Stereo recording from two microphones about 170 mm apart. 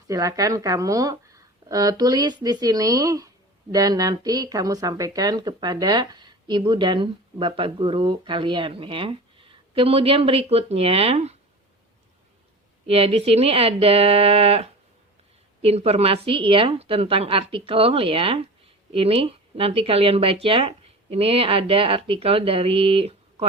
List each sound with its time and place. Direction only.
0.1 s speech: 20° right (ahead or behind); by 11.3 s 40° right (ahead or behind)
12.8 s speech: 35° right (ahead or behind)